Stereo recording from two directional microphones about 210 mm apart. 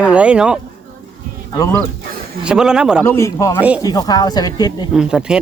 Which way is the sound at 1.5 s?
15° left (ahead or behind).